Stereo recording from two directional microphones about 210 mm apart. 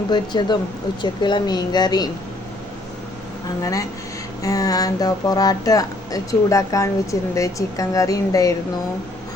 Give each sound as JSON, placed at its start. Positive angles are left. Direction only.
{"t": 0.1, "sound": "speech", "side_deg": 20}
{"t": 3.6, "sound": "speech", "side_deg": 15}